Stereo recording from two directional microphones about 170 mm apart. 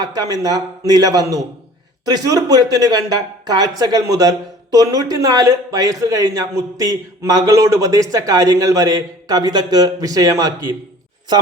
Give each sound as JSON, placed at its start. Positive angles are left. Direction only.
{"t": 0.0, "sound": "speech", "side_deg": -20}